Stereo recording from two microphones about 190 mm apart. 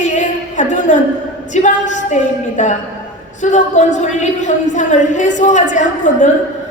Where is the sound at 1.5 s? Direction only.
40° left (ahead or behind).